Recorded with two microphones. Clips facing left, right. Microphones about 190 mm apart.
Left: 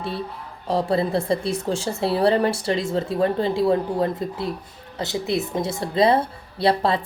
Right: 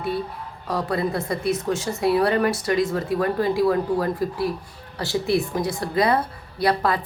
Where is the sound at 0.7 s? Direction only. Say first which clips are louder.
Left 3 dB; 25° left (ahead or behind).